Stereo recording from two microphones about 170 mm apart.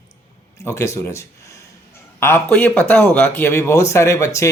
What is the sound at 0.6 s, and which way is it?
Speech, 15° left (ahead or behind).